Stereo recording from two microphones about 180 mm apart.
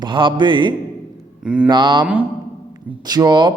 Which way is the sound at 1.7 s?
25° right (ahead or behind).